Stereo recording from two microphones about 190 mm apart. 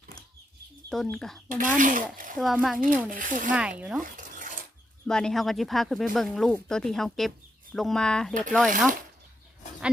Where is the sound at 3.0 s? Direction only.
45° right (ahead or behind).